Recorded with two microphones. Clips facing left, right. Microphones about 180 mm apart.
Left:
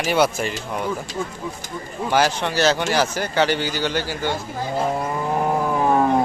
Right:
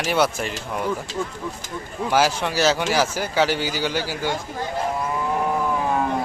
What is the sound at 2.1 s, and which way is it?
Speech, 5° right (ahead or behind).